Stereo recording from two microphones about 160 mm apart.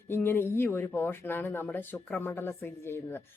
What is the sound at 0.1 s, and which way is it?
Speech, 15° left (ahead or behind).